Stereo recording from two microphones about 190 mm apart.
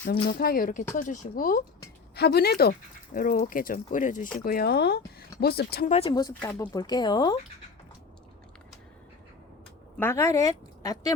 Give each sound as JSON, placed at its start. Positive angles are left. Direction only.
{"t": 0.3, "sound": "speech", "side_deg": 50}
{"t": 2.1, "sound": "speech", "side_deg": 55}
{"t": 5.9, "sound": "speech", "side_deg": 30}
{"t": 10.0, "sound": "speech", "side_deg": 15}